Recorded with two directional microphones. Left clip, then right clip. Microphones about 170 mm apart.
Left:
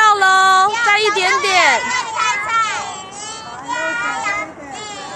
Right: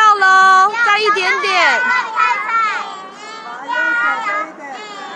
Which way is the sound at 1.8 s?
35° left (ahead or behind).